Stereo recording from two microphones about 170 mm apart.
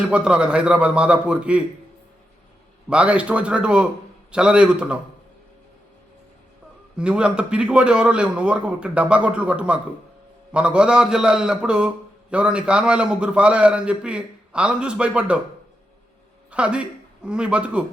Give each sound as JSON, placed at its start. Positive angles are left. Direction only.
{"t": 0.1, "sound": "a man's voice", "side_deg": -5}
{"t": 2.9, "sound": "a man's voice", "side_deg": -5}
{"t": 6.9, "sound": "a man's voice", "side_deg": -5}
{"t": 16.5, "sound": "a man's voice", "side_deg": -5}